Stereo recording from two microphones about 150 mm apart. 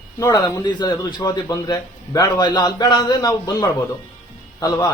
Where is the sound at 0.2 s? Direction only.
25° left (ahead or behind).